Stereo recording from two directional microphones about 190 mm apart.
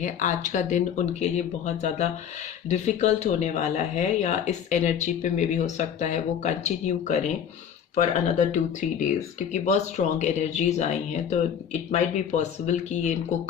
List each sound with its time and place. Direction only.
0.0 s speech: 40° left (ahead or behind)